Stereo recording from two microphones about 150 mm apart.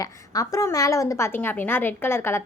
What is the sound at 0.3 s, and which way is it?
A woman's voice, 20° left (ahead or behind).